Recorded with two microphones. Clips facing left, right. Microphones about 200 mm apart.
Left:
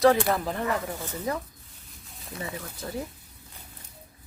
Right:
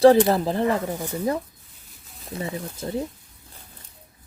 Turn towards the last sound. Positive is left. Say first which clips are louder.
# right 6 dB
turn(degrees=-25)  # may be behind; listen again after turning